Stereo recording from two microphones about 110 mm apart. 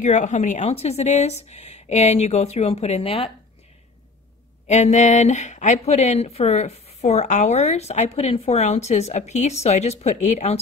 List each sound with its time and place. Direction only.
0.0 s a woman's voice: 90° left; by 3.3 s 70° left (ahead or behind)
4.6 s a woman's voice: 90° left